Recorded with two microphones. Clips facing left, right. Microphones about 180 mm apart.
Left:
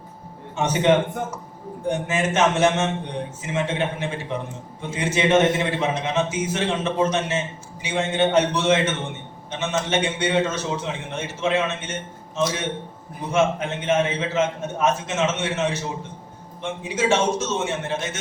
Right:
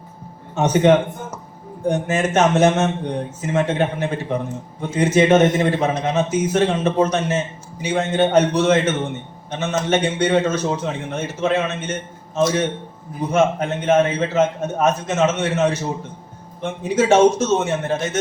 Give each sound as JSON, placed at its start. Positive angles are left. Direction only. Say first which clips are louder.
{"t": 0.5, "sound": "a man's voice", "louder": "right 4 dB", "side_deg": -40}
{"t": 13.3, "sound": "a man's voice", "louder": "right 3 dB", "side_deg": -40}